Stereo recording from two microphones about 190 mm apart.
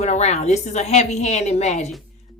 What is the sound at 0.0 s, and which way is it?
Speech, 35° left (ahead or behind).